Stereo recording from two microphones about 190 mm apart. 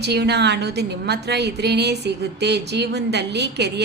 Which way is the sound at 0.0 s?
60° right (ahead or behind).